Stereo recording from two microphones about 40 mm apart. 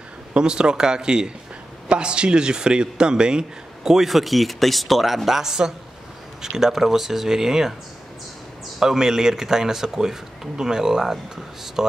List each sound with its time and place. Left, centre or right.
0.3 s speech: right
8.7 s speech: centre